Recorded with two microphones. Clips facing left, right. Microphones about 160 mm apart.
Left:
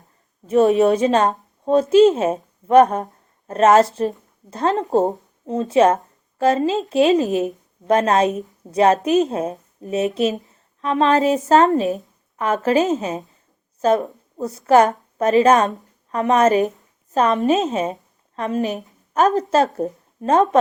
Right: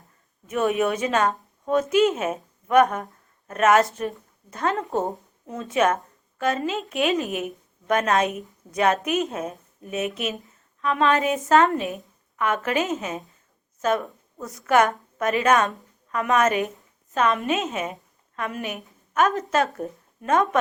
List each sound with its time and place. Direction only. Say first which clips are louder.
0.4 s a woman's voice: left 8 dB; 30° left (ahead or behind)